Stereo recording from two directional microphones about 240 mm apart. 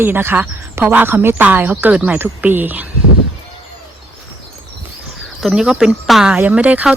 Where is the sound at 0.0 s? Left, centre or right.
Centre.